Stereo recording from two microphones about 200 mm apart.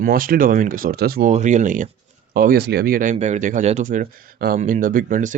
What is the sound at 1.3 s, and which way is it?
Speech, 35° right (ahead or behind).